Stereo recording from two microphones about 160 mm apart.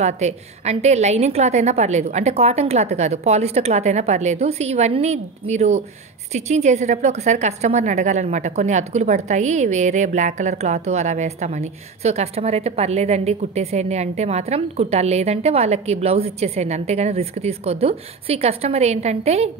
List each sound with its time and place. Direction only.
0.0 s a woman's voice: 45° right (ahead or behind)